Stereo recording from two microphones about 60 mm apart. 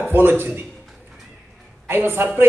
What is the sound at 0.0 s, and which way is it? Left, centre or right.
Speech, right.